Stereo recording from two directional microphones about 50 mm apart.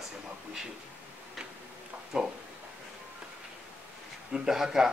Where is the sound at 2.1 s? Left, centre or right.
Centre.